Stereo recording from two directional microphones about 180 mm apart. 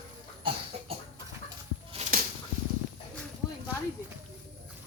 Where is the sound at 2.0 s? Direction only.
50° right (ahead or behind).